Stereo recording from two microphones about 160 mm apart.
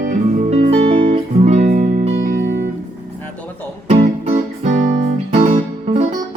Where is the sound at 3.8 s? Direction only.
40° right (ahead or behind).